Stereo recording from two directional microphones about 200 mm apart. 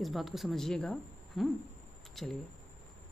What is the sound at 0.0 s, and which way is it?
Speech, centre (ahead or behind).